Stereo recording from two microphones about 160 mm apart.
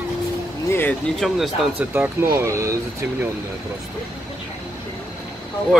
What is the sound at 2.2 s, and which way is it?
Speech, 20° right (ahead or behind).